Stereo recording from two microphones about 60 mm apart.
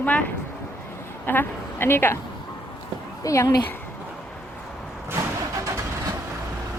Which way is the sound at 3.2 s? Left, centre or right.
Left.